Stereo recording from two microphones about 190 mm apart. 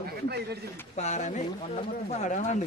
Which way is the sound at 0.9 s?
35° left (ahead or behind).